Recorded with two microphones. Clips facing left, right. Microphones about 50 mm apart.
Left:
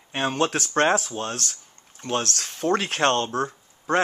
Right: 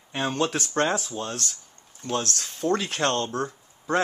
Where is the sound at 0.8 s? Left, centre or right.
Left.